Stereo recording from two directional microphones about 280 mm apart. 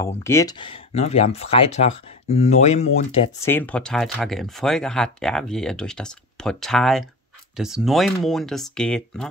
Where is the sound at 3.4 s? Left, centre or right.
Centre.